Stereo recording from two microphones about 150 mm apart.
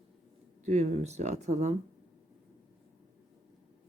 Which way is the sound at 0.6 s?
50° right (ahead or behind).